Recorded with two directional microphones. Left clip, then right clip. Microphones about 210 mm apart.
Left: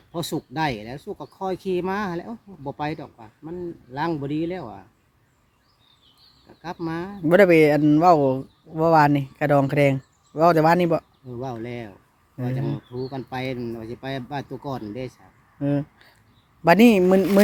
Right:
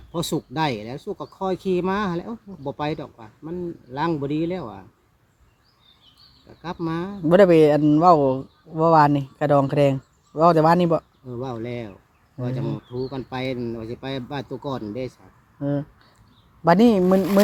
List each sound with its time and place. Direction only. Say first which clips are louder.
0.1 s speech: right 2 dB; 5° right (ahead or behind)
6.6 s speech: right 2 dB; 5° right (ahead or behind)
7.3 s speech: right 1 dB; 10° left (ahead or behind)
11.3 s speech: right 2 dB; centre (ahead or behind)
15.6 s speech: left 1 dB; 20° left (ahead or behind)